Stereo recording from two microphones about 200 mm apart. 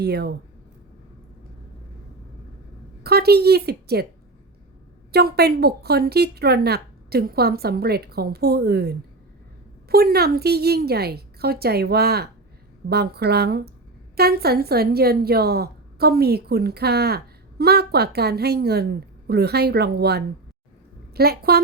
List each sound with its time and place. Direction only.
0.0 s speech: 55° right (ahead or behind)
3.0 s a woman's voice: 50° right (ahead or behind)
5.1 s a woman's voice: 50° right (ahead or behind)